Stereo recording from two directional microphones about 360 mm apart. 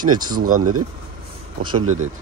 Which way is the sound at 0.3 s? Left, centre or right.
Right.